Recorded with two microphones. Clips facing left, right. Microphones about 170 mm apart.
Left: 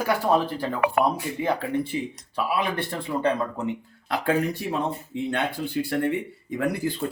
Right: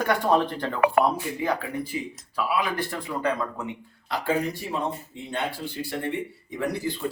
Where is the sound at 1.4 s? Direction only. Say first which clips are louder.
Left 3 dB; 25° left (ahead or behind).